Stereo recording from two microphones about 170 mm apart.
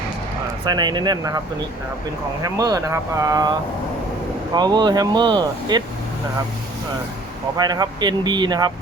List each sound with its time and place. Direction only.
0.6 s speech: 25° right (ahead or behind)
2.4 s speech: 20° right (ahead or behind)
4.5 s speech: 25° right (ahead or behind)
7.5 s speech: 25° right (ahead or behind)